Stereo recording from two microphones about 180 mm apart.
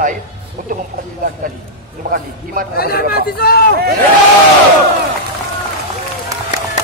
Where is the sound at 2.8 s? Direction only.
55° left (ahead or behind).